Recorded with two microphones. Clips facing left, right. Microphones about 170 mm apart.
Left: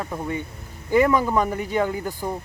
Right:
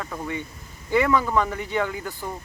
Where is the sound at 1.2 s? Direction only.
15° left (ahead or behind).